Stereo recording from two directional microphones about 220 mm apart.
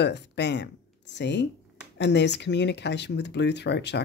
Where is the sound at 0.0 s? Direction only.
50° left (ahead or behind).